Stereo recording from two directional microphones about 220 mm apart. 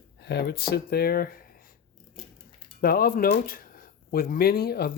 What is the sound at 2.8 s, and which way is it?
Speech, 45° left (ahead or behind).